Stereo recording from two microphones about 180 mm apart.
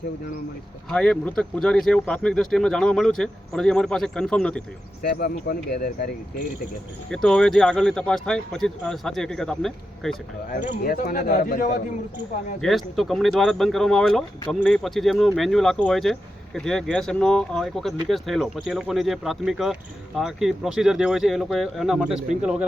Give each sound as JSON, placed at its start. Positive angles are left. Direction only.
{"t": 0.9, "sound": "speech", "side_deg": 5}
{"t": 5.0, "sound": "speech", "side_deg": 60}
{"t": 7.1, "sound": "speech", "side_deg": 5}
{"t": 10.8, "sound": "a man's voice", "side_deg": 55}
{"t": 12.6, "sound": "speech", "side_deg": 0}